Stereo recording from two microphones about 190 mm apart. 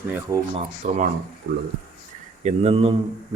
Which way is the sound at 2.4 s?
35° right (ahead or behind).